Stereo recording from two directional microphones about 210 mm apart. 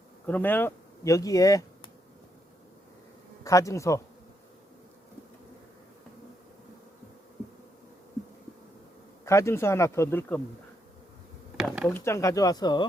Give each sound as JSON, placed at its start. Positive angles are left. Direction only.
{"t": 0.3, "sound": "speech", "side_deg": 10}
{"t": 3.4, "sound": "speech", "side_deg": 15}
{"t": 9.2, "sound": "speech", "side_deg": 15}
{"t": 11.5, "sound": "a sound", "side_deg": -5}
{"t": 11.9, "sound": "speech", "side_deg": 10}